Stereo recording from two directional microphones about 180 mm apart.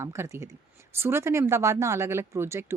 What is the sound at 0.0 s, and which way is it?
Speech, 15° right (ahead or behind).